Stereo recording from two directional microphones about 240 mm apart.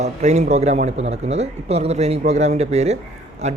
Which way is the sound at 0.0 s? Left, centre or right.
Right.